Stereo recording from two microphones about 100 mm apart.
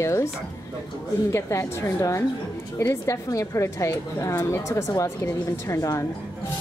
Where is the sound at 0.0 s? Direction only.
30° left (ahead or behind).